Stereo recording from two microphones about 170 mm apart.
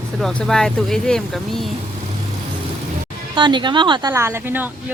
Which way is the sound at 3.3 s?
25° right (ahead or behind).